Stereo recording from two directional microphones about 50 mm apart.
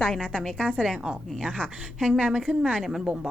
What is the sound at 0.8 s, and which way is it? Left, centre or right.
A woman's voice, centre.